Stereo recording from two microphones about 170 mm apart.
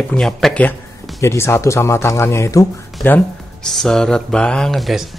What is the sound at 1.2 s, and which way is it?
Speech, 15° left (ahead or behind).